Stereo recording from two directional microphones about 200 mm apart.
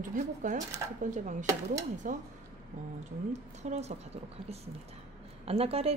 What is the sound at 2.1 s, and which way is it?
Speech, 40° right (ahead or behind).